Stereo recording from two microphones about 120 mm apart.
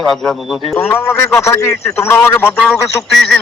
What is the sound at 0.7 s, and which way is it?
Speech, 20° left (ahead or behind).